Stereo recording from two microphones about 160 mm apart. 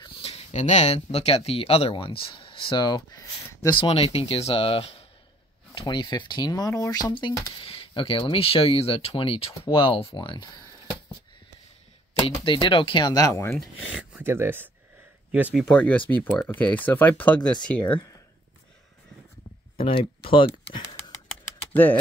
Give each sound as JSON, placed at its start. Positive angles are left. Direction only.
{"t": 0.0, "sound": "speech", "side_deg": 35}
{"t": 3.8, "sound": "speech", "side_deg": 40}
{"t": 12.4, "sound": "speech", "side_deg": 30}
{"t": 13.6, "sound": "speech", "side_deg": -5}
{"t": 15.6, "sound": "speech", "side_deg": 5}
{"t": 19.8, "sound": "speech", "side_deg": 35}
{"t": 21.7, "sound": "speech", "side_deg": 10}